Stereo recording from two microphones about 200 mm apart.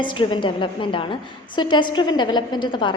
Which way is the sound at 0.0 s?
25° left (ahead or behind).